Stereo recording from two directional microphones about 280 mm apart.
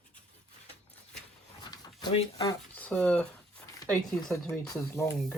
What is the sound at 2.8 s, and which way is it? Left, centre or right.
Speech, centre.